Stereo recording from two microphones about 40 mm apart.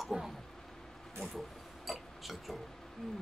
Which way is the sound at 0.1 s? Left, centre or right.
Centre.